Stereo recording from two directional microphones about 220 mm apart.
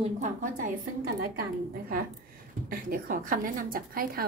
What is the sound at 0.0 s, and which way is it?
A woman's voice, 35° right (ahead or behind).